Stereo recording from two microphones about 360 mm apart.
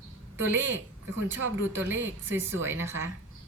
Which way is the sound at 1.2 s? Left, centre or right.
Right.